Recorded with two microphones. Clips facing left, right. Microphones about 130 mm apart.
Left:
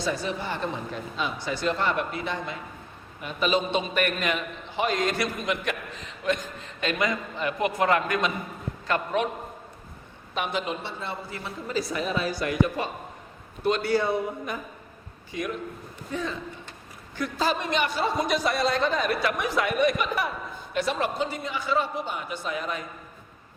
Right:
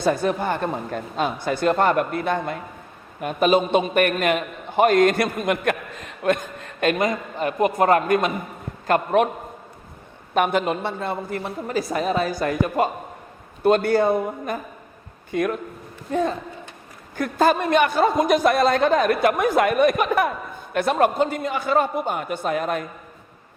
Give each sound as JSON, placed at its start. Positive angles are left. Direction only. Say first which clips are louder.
{"t": 0.0, "sound": "a man's voice", "louder": "right 8 dB", "side_deg": -50}
{"t": 10.3, "sound": "a man's voice", "louder": "right 9 dB", "side_deg": -55}